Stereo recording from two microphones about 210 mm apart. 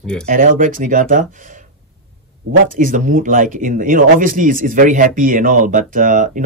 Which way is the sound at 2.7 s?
40° right (ahead or behind).